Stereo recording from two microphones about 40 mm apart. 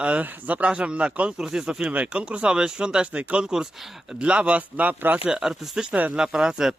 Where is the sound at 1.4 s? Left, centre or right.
Centre.